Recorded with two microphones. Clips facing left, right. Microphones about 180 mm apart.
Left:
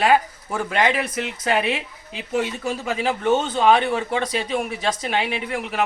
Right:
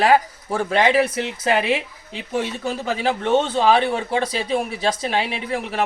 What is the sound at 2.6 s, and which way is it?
Speech, 35° right (ahead or behind).